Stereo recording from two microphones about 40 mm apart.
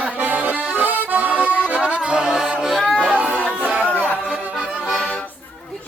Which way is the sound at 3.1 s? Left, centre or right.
Right.